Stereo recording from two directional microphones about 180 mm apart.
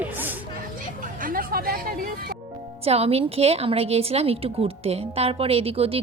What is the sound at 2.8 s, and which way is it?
A woman's voice, 35° right (ahead or behind).